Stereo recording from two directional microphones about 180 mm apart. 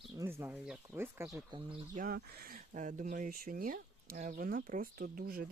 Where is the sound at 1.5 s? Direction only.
30° right (ahead or behind).